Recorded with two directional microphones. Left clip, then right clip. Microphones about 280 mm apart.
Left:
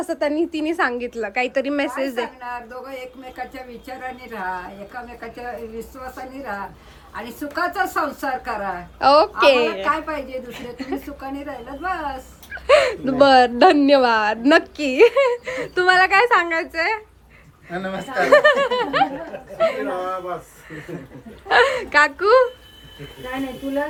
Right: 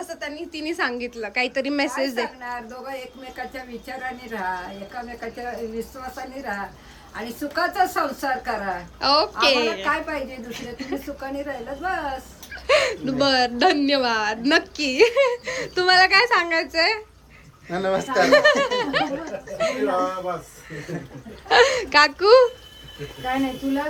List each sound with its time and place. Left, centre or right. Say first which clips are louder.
0.1 s speech: left 10 dB; centre
7.1 s speech: even; centre
17.7 s speech: right 5 dB; centre
18.2 s speech: left 3 dB; centre